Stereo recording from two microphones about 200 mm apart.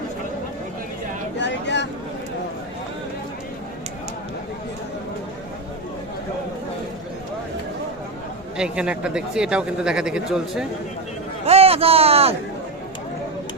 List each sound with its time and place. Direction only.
1.4 s a sound: 60° left (ahead or behind)
8.5 s speech: 5° right (ahead or behind)
11.4 s a man's voice: 30° right (ahead or behind)